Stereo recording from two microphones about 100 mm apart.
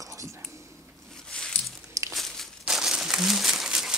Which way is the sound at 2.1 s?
5° left (ahead or behind).